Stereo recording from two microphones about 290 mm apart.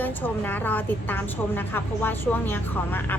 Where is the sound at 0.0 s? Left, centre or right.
Centre.